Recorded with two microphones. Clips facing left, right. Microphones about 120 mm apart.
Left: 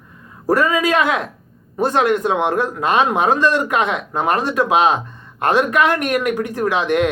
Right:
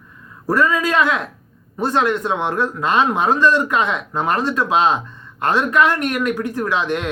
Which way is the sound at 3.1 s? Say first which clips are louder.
Even; 50° left (ahead or behind).